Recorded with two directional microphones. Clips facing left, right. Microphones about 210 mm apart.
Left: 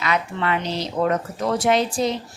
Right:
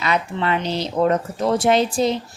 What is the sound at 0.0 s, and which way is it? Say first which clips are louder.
A woman's voice: right 2 dB; 30° right (ahead or behind).